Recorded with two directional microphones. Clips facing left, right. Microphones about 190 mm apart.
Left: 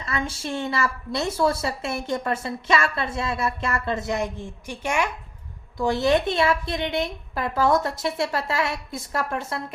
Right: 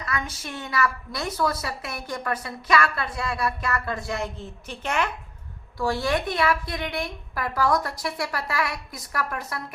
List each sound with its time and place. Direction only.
0.0 s a woman's voice: 25° left (ahead or behind)